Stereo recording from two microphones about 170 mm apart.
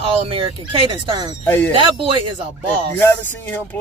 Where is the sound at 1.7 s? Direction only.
30° right (ahead or behind).